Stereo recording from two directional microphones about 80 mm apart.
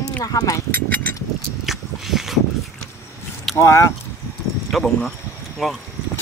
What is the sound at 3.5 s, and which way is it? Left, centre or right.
Speech, left.